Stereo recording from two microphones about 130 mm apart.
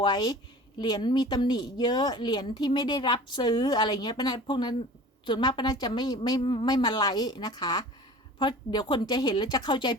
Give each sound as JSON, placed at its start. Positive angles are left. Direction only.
{"t": 0.0, "sound": "speech", "side_deg": 35}